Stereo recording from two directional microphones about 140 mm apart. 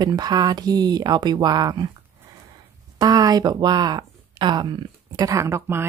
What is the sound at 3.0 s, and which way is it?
Speech, 25° right (ahead or behind).